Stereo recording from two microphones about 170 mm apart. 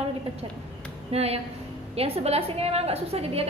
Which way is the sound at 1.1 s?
35° right (ahead or behind).